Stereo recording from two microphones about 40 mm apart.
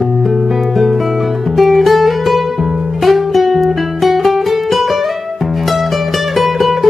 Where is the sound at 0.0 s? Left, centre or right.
Centre.